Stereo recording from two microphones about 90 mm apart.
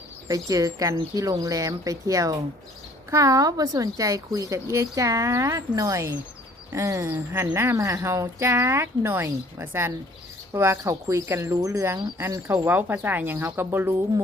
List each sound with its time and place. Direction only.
0.3 s speech: 40° right (ahead or behind)
12.5 s speech: 20° right (ahead or behind)